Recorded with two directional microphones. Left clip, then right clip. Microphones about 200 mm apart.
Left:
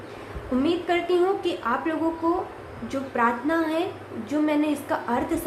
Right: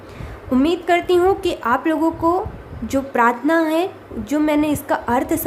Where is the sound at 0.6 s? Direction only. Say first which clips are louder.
Right 7 dB; 55° right (ahead or behind).